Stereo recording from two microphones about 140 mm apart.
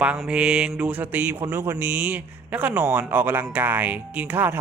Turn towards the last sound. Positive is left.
turn(degrees=-15)  # may be behind; listen again after turning